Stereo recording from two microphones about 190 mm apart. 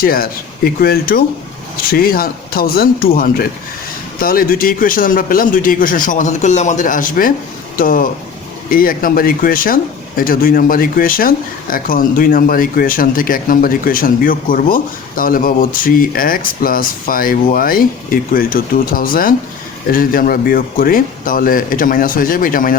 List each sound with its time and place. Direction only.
0.0 s speech: 50° left (ahead or behind)